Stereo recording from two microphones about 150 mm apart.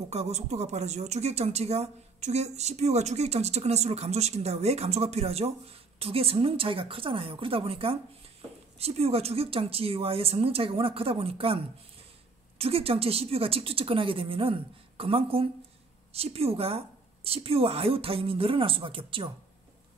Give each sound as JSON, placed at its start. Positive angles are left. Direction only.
{"t": 0.1, "sound": "a woman's voice", "side_deg": -45}